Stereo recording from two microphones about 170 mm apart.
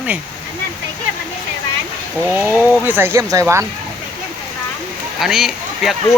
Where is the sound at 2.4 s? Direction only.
10° right (ahead or behind).